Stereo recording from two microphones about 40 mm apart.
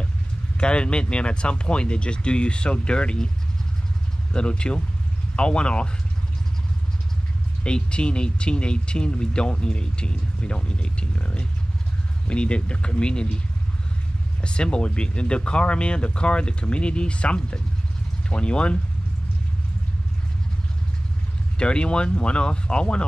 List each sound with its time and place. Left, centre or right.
0.6 s speech: left
4.3 s speech: left
7.6 s speech: left
14.4 s speech: left
21.5 s speech: left